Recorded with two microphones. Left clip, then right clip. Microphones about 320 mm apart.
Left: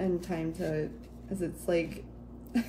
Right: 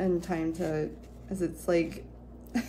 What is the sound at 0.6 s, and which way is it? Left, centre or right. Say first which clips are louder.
A woman's voice: right 2 dB; centre.